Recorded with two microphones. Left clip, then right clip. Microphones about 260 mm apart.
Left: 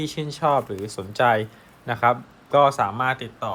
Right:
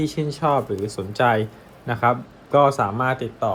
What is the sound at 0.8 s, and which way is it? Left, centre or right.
A man's voice, left.